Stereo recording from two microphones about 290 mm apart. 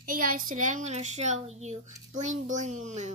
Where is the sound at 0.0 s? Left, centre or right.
Right.